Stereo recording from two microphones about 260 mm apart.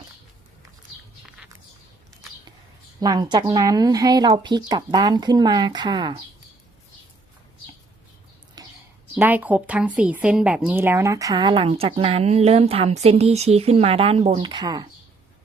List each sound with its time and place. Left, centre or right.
3.0 s speech: centre
8.6 s a sound: centre
9.1 s a woman's voice: centre